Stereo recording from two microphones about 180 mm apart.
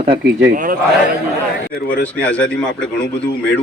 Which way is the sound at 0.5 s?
50° right (ahead or behind).